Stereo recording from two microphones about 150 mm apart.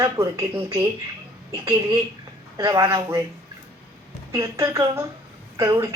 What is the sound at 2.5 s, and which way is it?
Speech, 25° right (ahead or behind).